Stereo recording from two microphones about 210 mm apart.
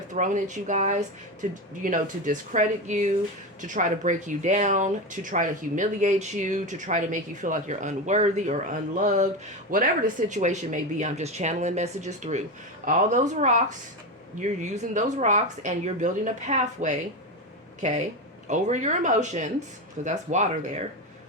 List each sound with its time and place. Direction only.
0.1 s speech: 35° right (ahead or behind)